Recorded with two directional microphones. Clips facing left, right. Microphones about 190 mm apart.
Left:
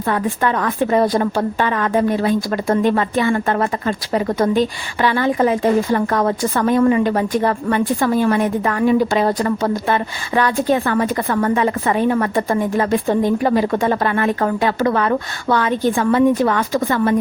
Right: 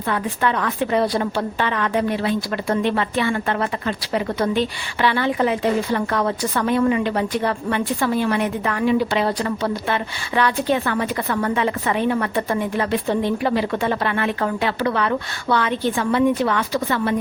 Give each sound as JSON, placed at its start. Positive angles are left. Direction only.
{"t": 0.1, "sound": "a woman's voice", "side_deg": 45}